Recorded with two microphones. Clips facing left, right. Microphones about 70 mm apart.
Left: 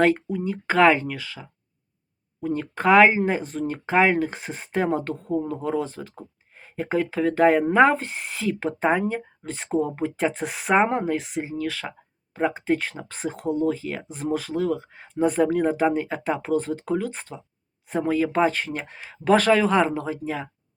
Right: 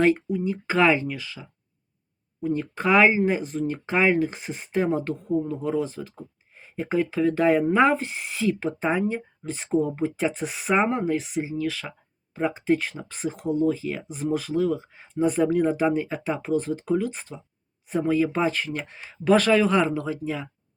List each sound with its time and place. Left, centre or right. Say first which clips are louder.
0.0 s speech: even; left